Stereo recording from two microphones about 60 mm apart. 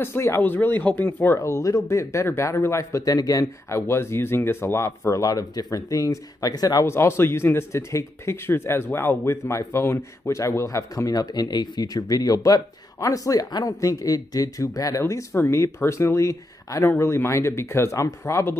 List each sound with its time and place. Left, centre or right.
0.0 s speech: left
0.4 s speech: left
1.2 s speech: left
3.6 s speech: left
5.2 s speech: left
6.9 s speech: left
9.3 s speech: left
11.1 s speech: left
17.0 s speech: left